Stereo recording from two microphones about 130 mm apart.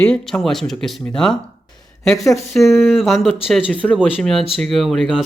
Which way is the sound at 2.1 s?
25° left (ahead or behind).